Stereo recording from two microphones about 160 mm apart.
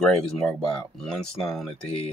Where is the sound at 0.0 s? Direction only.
5° left (ahead or behind).